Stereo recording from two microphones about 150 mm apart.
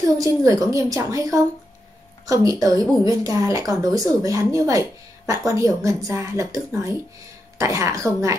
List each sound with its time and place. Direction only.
0.0 s speech: 20° right (ahead or behind)